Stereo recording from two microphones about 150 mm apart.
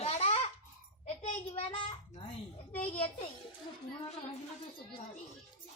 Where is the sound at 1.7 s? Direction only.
35° left (ahead or behind).